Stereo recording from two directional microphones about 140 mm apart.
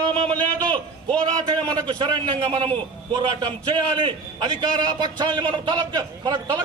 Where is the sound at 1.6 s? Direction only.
30° right (ahead or behind).